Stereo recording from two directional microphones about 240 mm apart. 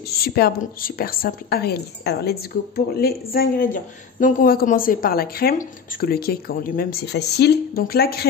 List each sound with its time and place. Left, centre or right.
0.1 s a woman's voice: left